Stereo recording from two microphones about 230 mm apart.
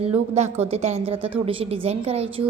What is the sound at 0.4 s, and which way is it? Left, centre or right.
A woman's voice, right.